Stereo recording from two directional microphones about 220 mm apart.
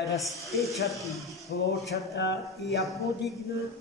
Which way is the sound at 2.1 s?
50° left (ahead or behind).